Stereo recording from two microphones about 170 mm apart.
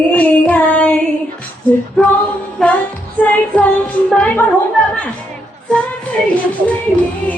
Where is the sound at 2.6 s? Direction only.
5° left (ahead or behind).